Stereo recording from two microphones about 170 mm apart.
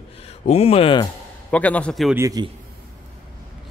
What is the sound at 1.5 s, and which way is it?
Speech, 10° left (ahead or behind).